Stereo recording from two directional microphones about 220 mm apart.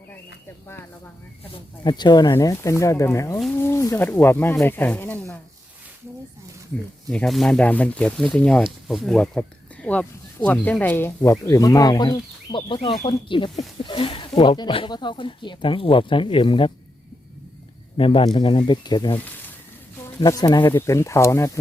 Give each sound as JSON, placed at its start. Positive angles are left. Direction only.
{"t": 1.5, "sound": "speech", "side_deg": 20}
{"t": 7.1, "sound": "speech", "side_deg": 5}
{"t": 17.9, "sound": "speech", "side_deg": 25}